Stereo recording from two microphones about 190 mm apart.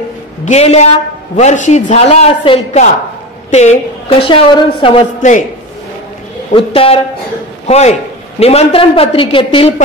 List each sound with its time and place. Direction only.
0.5 s a man's voice: 35° left (ahead or behind)
4.3 s a woman's voice: 30° left (ahead or behind)
6.5 s a woman's voice: 30° left (ahead or behind)